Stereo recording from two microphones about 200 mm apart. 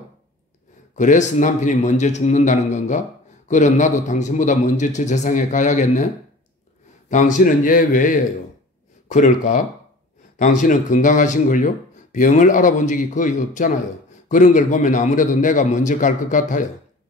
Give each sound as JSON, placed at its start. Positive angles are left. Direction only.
{"t": 0.9, "sound": "speech", "side_deg": 35}
{"t": 7.1, "sound": "speech", "side_deg": 40}